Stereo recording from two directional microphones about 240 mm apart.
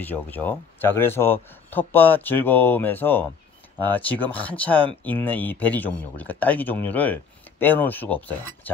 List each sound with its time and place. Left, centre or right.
0.0 s speech: centre